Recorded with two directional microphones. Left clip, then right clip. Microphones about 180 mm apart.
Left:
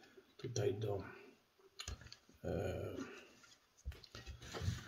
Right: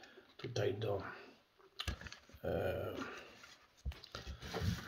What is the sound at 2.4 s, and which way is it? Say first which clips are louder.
Speech: right 4 dB; 25° left (ahead or behind).